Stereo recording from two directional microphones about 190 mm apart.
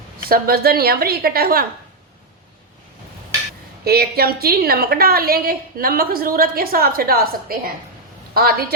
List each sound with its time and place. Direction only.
0.3 s a woman's voice: 50° right (ahead or behind)
3.8 s a woman's voice: 55° right (ahead or behind)